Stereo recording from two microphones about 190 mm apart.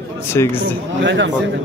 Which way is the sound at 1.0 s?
70° right (ahead or behind).